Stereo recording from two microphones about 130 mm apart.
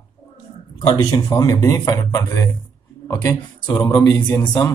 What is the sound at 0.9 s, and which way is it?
Speech, 30° left (ahead or behind).